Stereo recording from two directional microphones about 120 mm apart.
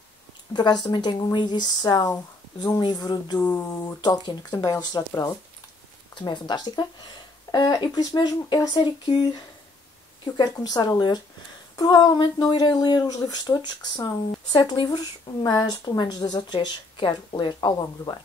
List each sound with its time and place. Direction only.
0.5 s speech: 35° left (ahead or behind)
3.3 s a sound: 15° left (ahead or behind)
4.0 s speech: 35° left (ahead or behind)